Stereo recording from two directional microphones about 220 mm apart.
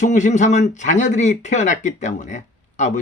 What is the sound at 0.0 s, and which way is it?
Speech, 30° left (ahead or behind).